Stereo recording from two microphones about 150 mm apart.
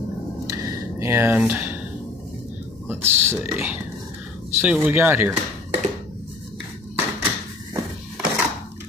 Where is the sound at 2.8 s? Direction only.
15° right (ahead or behind).